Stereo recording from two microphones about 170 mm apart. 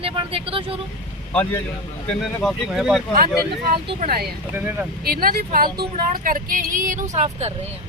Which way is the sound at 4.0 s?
60° right (ahead or behind).